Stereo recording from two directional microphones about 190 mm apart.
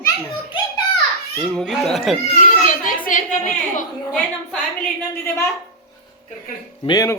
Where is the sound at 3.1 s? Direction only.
40° left (ahead or behind).